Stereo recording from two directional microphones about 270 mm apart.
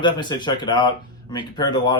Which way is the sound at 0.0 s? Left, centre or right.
Centre.